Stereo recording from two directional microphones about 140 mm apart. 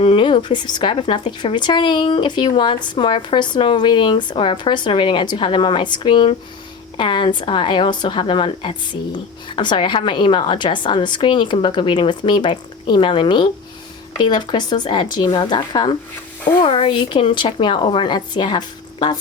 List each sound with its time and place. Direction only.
0.0 s a woman's voice: 40° left (ahead or behind)